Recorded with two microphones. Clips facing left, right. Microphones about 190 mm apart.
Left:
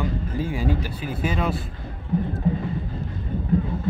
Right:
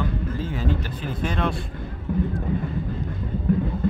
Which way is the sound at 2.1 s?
55° right (ahead or behind).